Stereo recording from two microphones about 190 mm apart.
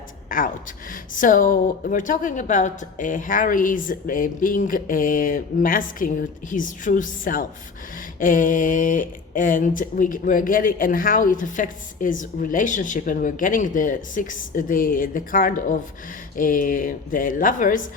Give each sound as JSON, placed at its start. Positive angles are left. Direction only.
{"t": 0.3, "sound": "speech", "side_deg": 45}